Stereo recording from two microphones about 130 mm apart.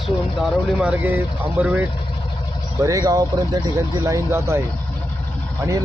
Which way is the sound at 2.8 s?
25° right (ahead or behind).